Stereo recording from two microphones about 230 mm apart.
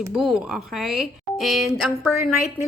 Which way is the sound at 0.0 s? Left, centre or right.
Centre.